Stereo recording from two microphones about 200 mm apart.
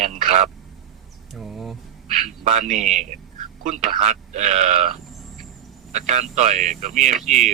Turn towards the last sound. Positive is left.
turn(degrees=-35)  # may be behind; listen again after turning